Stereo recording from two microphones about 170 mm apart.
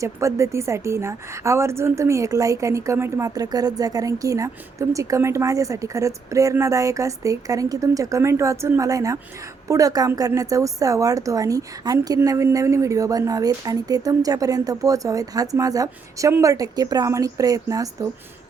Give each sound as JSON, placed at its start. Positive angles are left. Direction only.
{"t": 0.0, "sound": "a woman's voice", "side_deg": -15}